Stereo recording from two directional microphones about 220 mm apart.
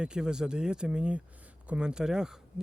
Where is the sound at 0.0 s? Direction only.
5° right (ahead or behind).